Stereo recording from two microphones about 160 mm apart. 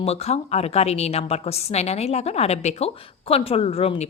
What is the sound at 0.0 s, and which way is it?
A woman's voice, 40° left (ahead or behind).